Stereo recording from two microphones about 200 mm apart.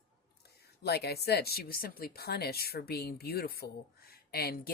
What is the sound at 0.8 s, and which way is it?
Speech, 55° left (ahead or behind).